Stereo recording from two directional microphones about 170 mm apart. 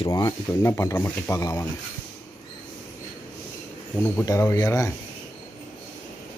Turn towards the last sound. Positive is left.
turn(degrees=20)  # may be behind; listen again after turning